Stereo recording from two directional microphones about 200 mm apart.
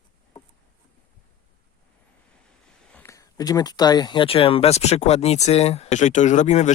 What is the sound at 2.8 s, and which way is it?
Speech, 10° left (ahead or behind).